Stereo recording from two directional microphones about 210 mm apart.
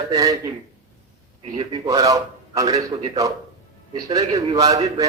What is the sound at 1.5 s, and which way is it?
A man's voice, 20° right (ahead or behind).